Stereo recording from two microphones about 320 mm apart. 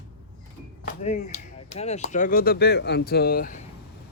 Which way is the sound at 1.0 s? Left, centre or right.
Left.